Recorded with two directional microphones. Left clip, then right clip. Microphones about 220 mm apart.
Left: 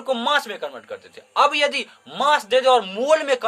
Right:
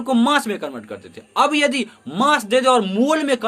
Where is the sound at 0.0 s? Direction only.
5° right (ahead or behind).